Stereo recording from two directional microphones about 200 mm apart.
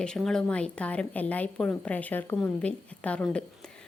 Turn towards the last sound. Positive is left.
turn(degrees=5)  # may be behind; listen again after turning